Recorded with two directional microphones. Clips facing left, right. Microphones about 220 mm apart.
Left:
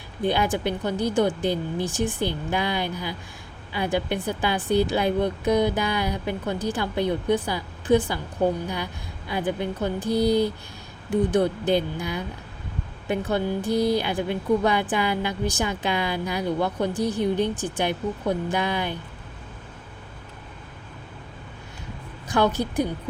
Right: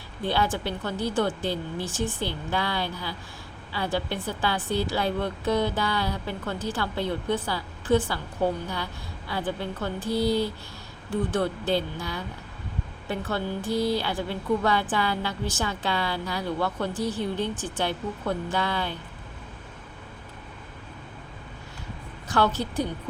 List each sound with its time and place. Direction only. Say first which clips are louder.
0.2 s a woman's voice: left 3 dB; 15° left (ahead or behind)
22.3 s a woman's voice: left 3 dB; 15° left (ahead or behind)